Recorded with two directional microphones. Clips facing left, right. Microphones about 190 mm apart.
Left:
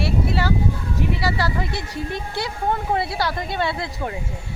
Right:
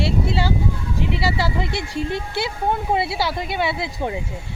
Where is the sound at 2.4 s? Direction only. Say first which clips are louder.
Even; 15° right (ahead or behind).